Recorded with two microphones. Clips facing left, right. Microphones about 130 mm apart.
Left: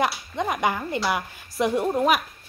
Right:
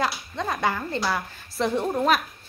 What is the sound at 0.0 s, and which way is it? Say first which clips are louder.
A woman's voice: left 2 dB; 15° left (ahead or behind).